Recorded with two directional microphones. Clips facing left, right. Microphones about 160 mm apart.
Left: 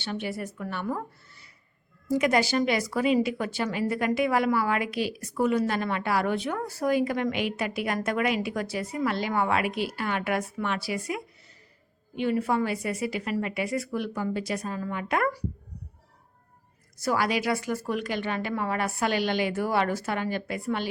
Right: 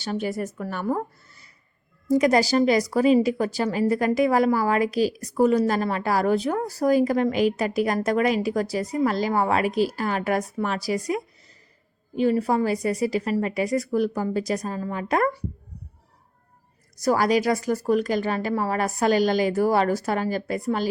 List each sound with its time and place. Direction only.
0.0 s speech: 40° right (ahead or behind)
17.0 s speech: 40° right (ahead or behind)